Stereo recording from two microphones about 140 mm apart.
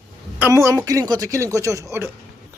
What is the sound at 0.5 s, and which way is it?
Speech, 20° right (ahead or behind).